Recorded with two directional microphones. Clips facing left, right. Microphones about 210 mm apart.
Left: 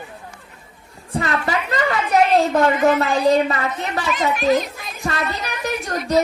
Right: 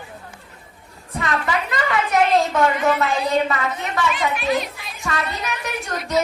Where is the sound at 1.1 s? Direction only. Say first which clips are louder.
Left 2 dB; 35° left (ahead or behind).